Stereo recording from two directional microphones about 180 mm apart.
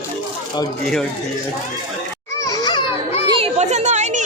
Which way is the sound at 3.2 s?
25° right (ahead or behind).